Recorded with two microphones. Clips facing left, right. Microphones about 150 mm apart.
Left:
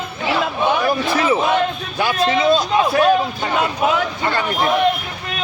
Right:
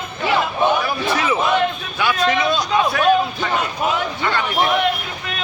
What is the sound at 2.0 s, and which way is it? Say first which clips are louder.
A man's voice: left 1 dB; 35° left (ahead or behind).